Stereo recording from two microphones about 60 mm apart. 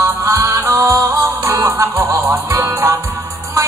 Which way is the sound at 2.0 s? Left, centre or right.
Right.